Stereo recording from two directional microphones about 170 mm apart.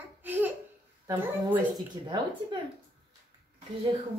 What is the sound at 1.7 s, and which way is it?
Speech, 25° right (ahead or behind).